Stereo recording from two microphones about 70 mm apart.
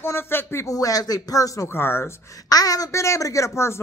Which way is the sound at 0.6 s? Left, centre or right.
Left.